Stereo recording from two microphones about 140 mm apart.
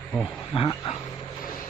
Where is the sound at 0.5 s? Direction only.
40° left (ahead or behind).